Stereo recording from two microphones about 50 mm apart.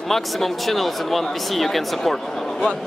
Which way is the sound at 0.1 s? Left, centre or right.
Centre.